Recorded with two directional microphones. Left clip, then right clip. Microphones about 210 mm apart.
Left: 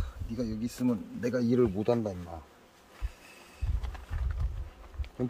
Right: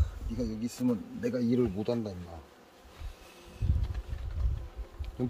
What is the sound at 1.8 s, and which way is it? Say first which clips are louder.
Speech: left 4 dB; 20° left (ahead or behind).